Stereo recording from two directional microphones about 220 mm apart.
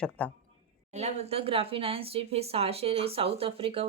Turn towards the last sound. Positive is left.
turn(degrees=-25)  # may be behind; listen again after turning